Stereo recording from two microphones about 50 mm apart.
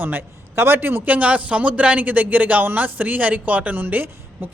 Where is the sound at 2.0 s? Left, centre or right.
Right.